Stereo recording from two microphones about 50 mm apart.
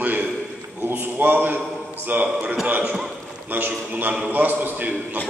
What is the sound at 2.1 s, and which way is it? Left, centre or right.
Speech, right.